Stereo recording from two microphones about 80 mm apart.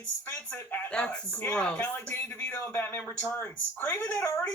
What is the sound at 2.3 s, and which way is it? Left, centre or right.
Speech, left.